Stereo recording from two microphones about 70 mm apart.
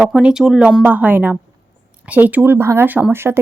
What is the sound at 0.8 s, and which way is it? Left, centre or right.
Speech, right.